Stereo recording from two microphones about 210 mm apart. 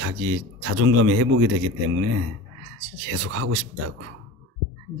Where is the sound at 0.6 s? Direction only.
70° right (ahead or behind).